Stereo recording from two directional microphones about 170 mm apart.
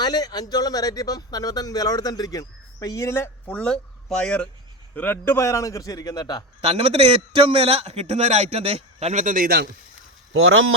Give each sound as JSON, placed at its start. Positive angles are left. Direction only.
{"t": 0.0, "sound": "speech", "side_deg": 25}
{"t": 6.6, "sound": "a man's voice", "side_deg": -35}